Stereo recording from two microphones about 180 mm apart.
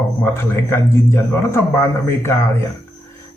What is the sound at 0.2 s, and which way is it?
Speech, 15° left (ahead or behind).